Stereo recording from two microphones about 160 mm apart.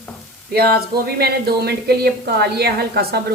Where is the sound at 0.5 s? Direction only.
75° right (ahead or behind).